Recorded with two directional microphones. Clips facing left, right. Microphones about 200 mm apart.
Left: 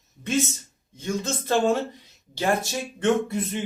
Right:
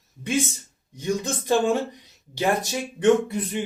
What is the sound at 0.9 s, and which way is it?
A man's voice, 15° right (ahead or behind).